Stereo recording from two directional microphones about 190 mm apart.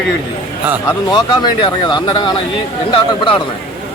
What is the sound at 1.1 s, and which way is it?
Speech, 25° left (ahead or behind).